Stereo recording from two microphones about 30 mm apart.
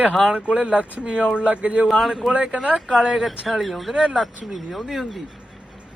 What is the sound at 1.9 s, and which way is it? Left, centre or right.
Speech, centre.